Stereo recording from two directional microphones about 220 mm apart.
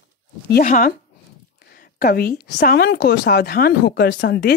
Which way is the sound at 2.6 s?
45° left (ahead or behind).